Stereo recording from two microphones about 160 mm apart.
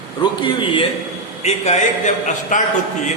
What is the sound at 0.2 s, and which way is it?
Speech, 30° left (ahead or behind).